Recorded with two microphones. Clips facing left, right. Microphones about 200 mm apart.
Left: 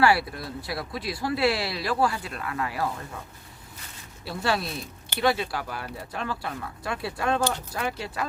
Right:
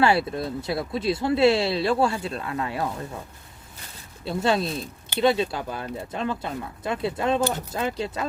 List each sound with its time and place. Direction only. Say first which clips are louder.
0.0 s speech: right 2 dB; 25° right (ahead or behind)
4.3 s speech: right 4 dB; 20° right (ahead or behind)